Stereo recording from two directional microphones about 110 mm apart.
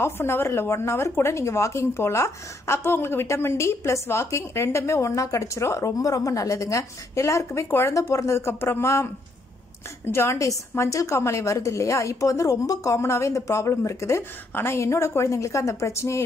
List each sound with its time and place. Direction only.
0.0 s speech: 20° left (ahead or behind)
10.1 s speech: 25° left (ahead or behind)